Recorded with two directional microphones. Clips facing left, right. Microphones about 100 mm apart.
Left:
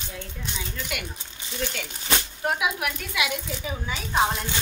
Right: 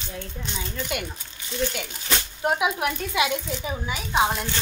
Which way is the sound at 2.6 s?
30° right (ahead or behind).